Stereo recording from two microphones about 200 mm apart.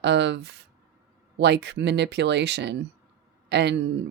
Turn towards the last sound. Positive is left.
turn(degrees=-60)  # may be behind; listen again after turning